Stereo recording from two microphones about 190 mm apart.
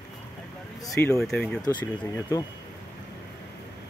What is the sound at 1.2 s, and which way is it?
Speech, 5° left (ahead or behind).